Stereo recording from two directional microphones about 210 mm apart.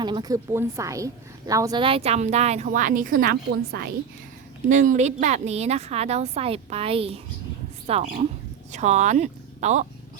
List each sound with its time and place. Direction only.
0.0 s a woman's voice: 20° right (ahead or behind); by 3.9 s 45° right (ahead or behind)
4.7 s a woman's voice: 35° right (ahead or behind)